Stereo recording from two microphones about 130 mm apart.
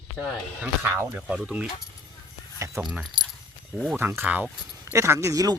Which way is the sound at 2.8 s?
10° right (ahead or behind).